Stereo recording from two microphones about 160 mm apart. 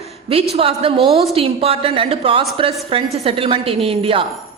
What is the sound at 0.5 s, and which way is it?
A woman's voice, 40° right (ahead or behind).